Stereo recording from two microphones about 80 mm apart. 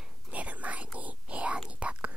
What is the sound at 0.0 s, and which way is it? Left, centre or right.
Whispering, centre.